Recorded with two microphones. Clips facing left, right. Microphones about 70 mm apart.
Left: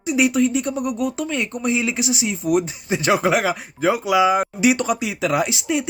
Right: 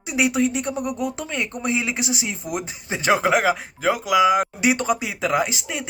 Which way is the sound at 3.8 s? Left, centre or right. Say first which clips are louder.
Left 1 dB; centre.